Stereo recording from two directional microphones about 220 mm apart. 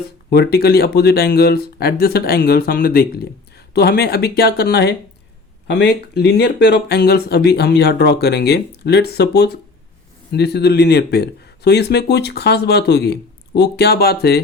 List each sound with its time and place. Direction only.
0.0 s speech: 45° left (ahead or behind)